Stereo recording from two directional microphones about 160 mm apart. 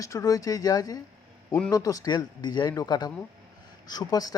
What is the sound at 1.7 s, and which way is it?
A man's voice, 20° left (ahead or behind).